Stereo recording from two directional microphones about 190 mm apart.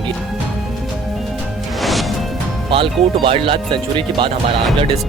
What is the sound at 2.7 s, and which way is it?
Speech, 30° right (ahead or behind).